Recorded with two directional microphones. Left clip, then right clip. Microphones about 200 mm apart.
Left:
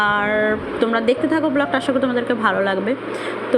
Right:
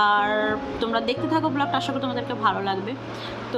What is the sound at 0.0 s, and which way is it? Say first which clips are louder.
A woman's voice: left 3 dB; 15° left (ahead or behind).